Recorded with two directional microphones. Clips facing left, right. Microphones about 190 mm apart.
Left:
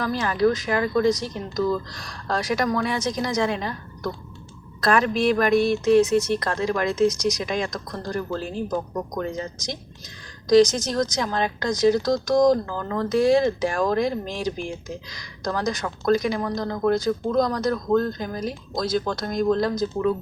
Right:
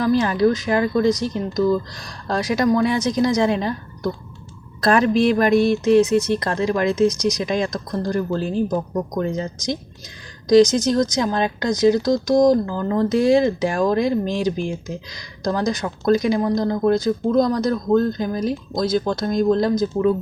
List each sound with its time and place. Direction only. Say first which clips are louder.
0.0 s speech: right 4 dB; 25° right (ahead or behind)
2.2 s speech: right 4 dB; 20° right (ahead or behind)
10.5 s speech: right 3 dB; 20° right (ahead or behind)